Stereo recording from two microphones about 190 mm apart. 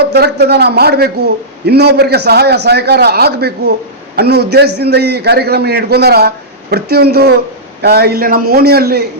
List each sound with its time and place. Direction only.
0.1 s a man's voice: 60° right (ahead or behind)